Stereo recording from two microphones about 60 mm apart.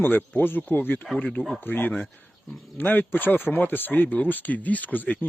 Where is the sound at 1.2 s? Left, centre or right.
Left.